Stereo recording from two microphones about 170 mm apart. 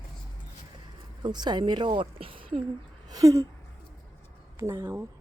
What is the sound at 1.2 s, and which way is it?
Speech, 25° right (ahead or behind).